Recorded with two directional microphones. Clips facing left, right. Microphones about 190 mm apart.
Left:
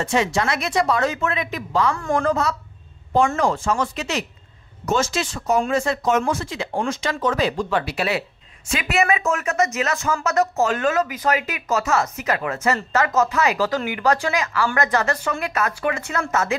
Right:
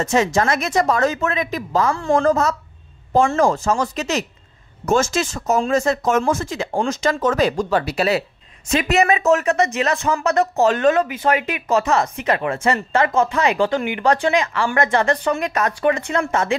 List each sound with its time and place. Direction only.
0.0 s speech: 45° right (ahead or behind)
2.0 s speech: 25° right (ahead or behind)
2.2 s speech: 45° right (ahead or behind)